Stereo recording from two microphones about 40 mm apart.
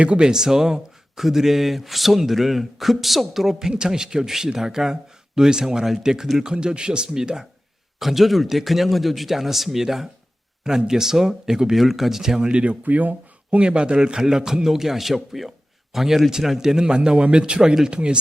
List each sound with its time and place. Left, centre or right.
0.0 s speech: right
0.3 s speech: centre
7.9 s speech: centre
12.4 s speech: right
12.8 s speech: right
13.6 s speech: right